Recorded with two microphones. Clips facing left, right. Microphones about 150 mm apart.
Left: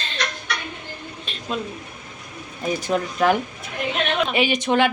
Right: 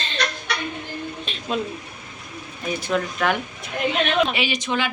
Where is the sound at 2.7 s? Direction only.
40° left (ahead or behind).